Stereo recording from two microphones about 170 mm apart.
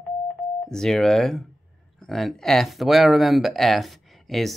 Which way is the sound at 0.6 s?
5° left (ahead or behind).